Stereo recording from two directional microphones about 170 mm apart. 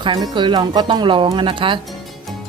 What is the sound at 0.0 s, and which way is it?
Speech, 30° right (ahead or behind).